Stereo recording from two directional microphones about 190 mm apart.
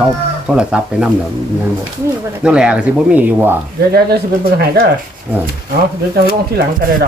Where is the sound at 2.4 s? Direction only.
5° right (ahead or behind).